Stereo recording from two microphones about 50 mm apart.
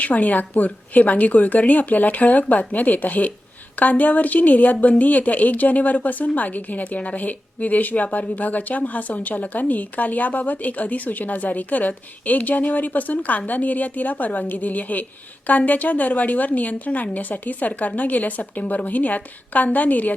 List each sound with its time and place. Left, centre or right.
0.0 s speech: left